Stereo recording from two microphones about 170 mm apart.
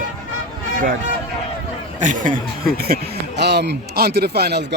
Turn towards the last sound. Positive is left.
turn(degrees=-75)  # may be behind; listen again after turning